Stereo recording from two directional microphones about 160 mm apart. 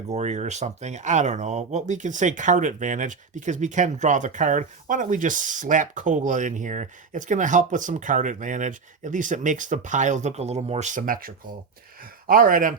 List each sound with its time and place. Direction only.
0.1 s speech: 45° right (ahead or behind)
12.3 s speech: 60° right (ahead or behind)